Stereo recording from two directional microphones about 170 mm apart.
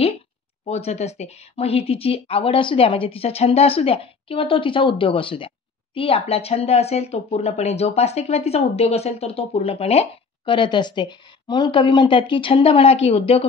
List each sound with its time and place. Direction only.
0.7 s speech: 40° left (ahead or behind)